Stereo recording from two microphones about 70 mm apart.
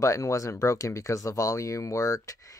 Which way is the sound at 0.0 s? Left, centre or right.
Left.